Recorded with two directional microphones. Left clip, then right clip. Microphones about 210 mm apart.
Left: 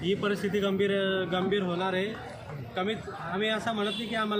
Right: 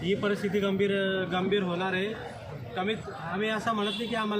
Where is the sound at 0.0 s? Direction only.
Centre (ahead or behind).